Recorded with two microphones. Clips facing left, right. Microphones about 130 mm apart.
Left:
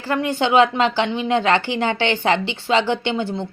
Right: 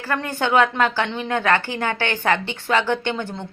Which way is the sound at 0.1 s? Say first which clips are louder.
Left 3 dB; 15° left (ahead or behind).